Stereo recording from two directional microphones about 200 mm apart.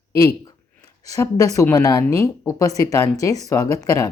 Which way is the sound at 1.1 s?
15° left (ahead or behind).